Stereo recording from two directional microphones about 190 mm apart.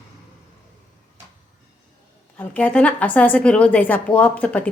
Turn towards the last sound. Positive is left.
turn(degrees=10)  # may be behind; listen again after turning